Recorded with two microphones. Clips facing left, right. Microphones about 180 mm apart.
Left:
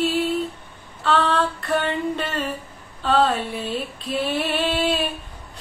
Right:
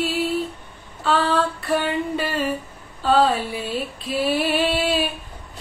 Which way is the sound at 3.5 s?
5° right (ahead or behind).